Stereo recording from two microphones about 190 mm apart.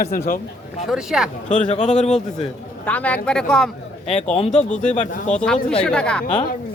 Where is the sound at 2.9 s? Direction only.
10° left (ahead or behind).